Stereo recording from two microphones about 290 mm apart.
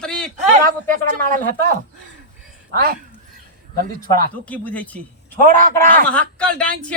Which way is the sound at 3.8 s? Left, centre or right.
Right.